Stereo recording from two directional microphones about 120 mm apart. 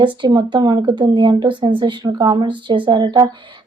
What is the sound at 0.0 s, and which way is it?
A woman's voice, 40° right (ahead or behind).